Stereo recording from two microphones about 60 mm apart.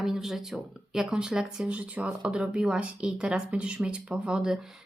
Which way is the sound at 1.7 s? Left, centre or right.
Right.